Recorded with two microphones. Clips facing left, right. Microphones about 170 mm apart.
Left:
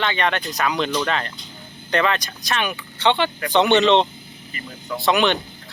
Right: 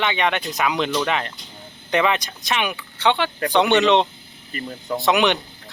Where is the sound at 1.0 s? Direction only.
15° right (ahead or behind).